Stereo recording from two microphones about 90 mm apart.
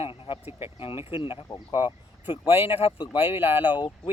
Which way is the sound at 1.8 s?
90° left.